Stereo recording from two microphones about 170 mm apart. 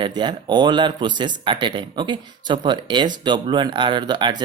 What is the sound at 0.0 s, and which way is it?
Speech, 25° right (ahead or behind).